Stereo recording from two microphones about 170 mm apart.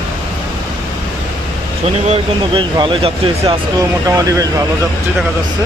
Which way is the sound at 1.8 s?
35° right (ahead or behind).